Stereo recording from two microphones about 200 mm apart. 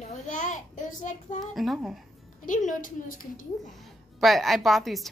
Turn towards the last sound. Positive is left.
turn(degrees=0)  # may be behind; listen again after turning